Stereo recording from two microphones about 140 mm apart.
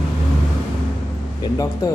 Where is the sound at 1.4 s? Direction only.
25° left (ahead or behind).